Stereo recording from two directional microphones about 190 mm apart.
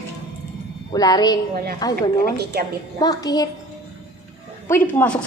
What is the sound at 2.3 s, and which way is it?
Speech, 55° right (ahead or behind).